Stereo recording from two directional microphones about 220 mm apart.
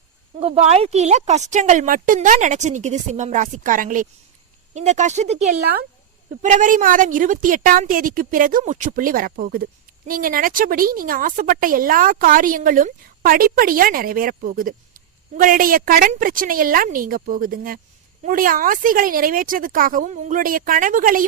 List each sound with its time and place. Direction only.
0.3 s a woman's voice: 30° right (ahead or behind)